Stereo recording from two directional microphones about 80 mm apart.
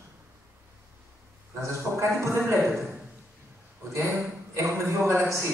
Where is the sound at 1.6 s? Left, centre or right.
Right.